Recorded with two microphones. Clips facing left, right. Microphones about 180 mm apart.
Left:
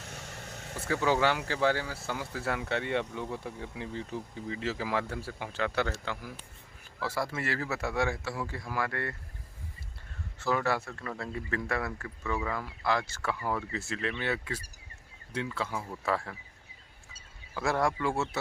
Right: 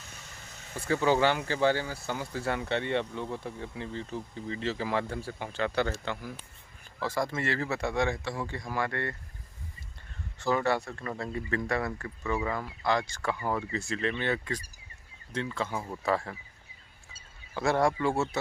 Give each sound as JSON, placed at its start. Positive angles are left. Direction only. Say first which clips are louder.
{"t": 0.0, "sound": "vehicle", "louder": "left 6 dB", "side_deg": 70}
{"t": 0.8, "sound": "speech", "louder": "right 2 dB", "side_deg": 0}
{"t": 10.4, "sound": "speech", "louder": "right 2 dB", "side_deg": 0}
{"t": 17.5, "sound": "speech", "louder": "right 3 dB", "side_deg": 0}